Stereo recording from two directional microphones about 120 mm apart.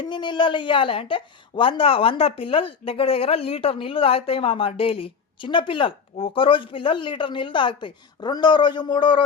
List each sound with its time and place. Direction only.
0.0 s speech: 40° left (ahead or behind)